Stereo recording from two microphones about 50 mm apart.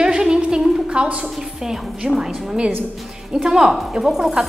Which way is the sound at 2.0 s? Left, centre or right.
Right.